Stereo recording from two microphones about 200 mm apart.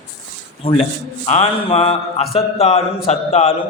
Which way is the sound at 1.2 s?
30° left (ahead or behind).